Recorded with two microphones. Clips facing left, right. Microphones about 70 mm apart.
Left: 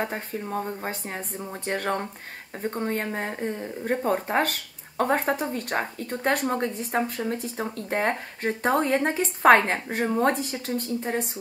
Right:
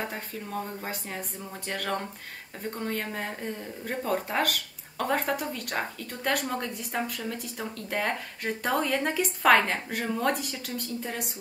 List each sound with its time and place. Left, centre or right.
0.0 s a woman's voice: left